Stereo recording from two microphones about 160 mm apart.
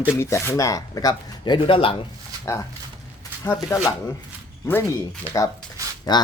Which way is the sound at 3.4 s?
15° left (ahead or behind).